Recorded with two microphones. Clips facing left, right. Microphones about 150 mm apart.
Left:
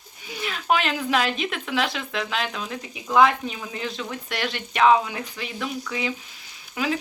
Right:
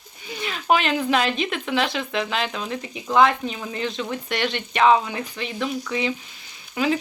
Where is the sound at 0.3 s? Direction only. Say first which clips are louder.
Right 2 dB; centre (ahead or behind).